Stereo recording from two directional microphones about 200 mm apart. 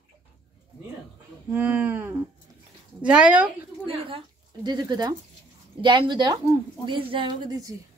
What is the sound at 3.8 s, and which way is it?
A woman's voice, 25° right (ahead or behind).